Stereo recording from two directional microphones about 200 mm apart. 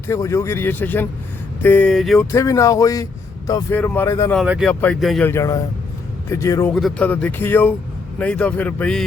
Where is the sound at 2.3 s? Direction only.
15° left (ahead or behind).